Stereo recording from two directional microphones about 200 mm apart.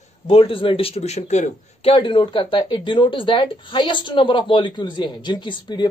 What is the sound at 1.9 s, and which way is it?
Speech, 25° left (ahead or behind).